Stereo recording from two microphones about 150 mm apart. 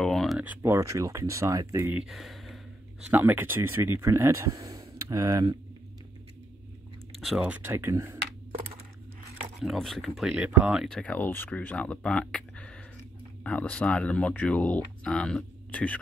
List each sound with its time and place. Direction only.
0.0 s a sound: centre (ahead or behind)
0.4 s speech: 15° right (ahead or behind)
2.0 s speech: centre (ahead or behind)
3.1 s speech: 15° right (ahead or behind)
7.2 s speech: centre (ahead or behind)
7.6 s speech: 15° right (ahead or behind)
9.6 s speech: centre (ahead or behind)
11.0 s speech: 10° left (ahead or behind)